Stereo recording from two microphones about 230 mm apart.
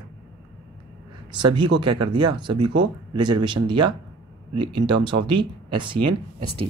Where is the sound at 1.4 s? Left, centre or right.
Centre.